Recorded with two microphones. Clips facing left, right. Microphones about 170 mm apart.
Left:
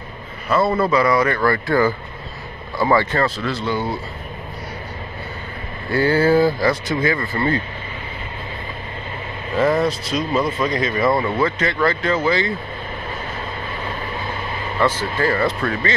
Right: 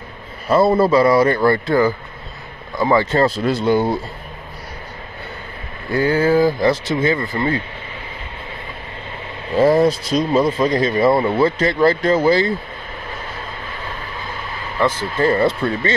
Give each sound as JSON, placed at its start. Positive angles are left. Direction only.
{"t": 0.5, "sound": "speech", "side_deg": -35}
{"t": 3.2, "sound": "speech", "side_deg": -40}
{"t": 5.9, "sound": "speech", "side_deg": -15}
{"t": 6.6, "sound": "speech", "side_deg": -25}
{"t": 9.6, "sound": "speech", "side_deg": -30}
{"t": 15.0, "sound": "speech", "side_deg": -20}